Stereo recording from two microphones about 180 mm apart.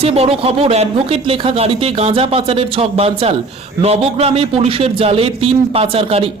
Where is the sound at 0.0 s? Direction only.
35° right (ahead or behind).